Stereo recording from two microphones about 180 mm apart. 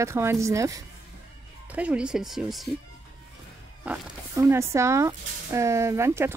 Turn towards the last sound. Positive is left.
turn(degrees=-15)  # may be behind; listen again after turning